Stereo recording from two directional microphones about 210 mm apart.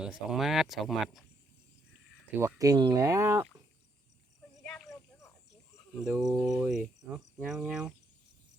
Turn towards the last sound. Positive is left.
turn(degrees=-5)  # may be behind; listen again after turning